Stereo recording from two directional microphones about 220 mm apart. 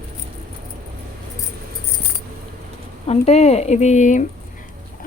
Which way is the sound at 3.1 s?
30° left (ahead or behind).